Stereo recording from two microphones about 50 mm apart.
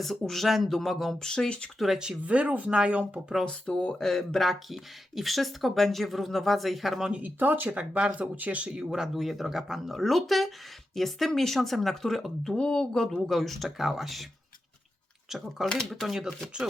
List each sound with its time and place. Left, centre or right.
0.0 s speech: centre
1.3 s speech: centre
2.2 s speech: right
3.4 s speech: centre
7.2 s speech: right
7.8 s speech: right
8.7 s speech: centre
12.5 s speech: centre
15.3 s speech: centre